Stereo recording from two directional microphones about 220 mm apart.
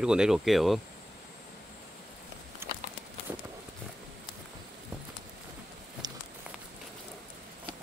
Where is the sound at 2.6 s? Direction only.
10° right (ahead or behind).